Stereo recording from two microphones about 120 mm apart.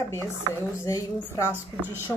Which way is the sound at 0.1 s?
20° left (ahead or behind).